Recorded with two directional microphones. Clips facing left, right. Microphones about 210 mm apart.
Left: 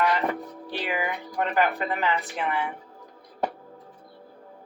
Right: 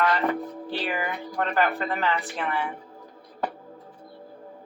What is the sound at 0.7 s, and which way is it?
Speech, 15° left (ahead or behind).